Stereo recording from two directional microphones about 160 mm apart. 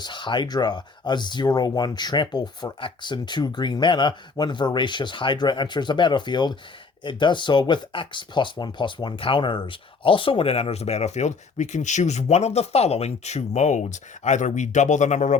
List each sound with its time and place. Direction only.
0.0 s speech: 30° left (ahead or behind); by 15.4 s 50° left (ahead or behind)